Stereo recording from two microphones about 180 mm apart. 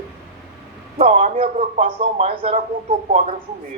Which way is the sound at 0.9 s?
35° right (ahead or behind).